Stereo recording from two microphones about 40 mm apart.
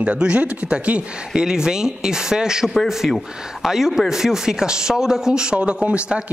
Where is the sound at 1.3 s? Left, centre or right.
Centre.